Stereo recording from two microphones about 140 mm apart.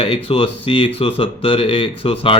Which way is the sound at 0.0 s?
40° left (ahead or behind).